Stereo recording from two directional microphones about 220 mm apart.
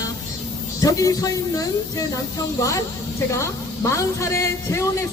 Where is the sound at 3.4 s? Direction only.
15° left (ahead or behind).